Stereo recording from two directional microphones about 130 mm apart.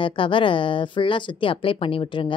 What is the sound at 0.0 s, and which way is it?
Speech, 40° left (ahead or behind).